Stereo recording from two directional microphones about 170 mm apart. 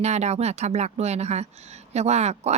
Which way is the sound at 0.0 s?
40° right (ahead or behind).